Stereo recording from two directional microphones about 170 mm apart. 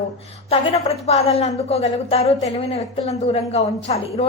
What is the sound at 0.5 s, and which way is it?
A woman's voice, 35° left (ahead or behind).